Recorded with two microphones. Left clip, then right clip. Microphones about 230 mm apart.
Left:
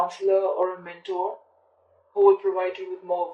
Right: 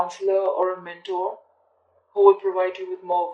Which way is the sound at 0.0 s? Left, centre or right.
Right.